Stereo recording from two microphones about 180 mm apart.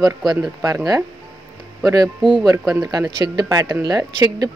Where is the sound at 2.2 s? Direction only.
25° right (ahead or behind).